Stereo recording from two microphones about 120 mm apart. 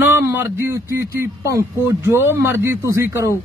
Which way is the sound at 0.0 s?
15° right (ahead or behind).